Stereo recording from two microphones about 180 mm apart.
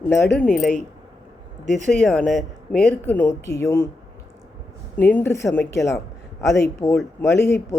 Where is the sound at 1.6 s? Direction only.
40° right (ahead or behind).